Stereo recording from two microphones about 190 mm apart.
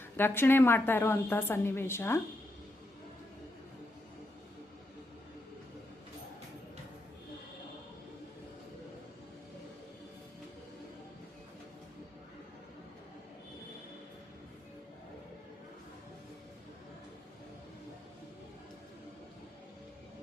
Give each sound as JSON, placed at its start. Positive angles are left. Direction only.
{"t": 0.2, "sound": "a woman's voice", "side_deg": 10}